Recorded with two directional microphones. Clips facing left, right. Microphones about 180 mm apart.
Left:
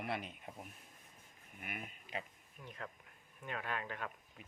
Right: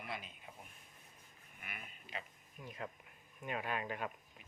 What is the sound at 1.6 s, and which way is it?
Livestock, 45° left (ahead or behind).